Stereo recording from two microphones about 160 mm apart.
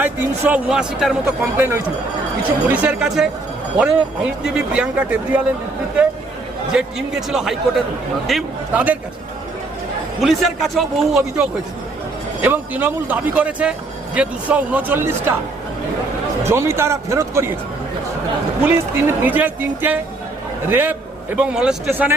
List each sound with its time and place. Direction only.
0.0 s a man's voice: 10° right (ahead or behind)
6.7 s a man's voice: 5° right (ahead or behind)
10.2 s a man's voice: centre (ahead or behind)
12.4 s a man's voice: 10° right (ahead or behind)
16.5 s a man's voice: 15° right (ahead or behind)
18.6 s a man's voice: 15° right (ahead or behind)